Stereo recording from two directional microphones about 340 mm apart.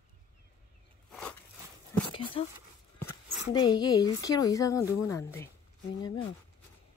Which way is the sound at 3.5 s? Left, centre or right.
Centre.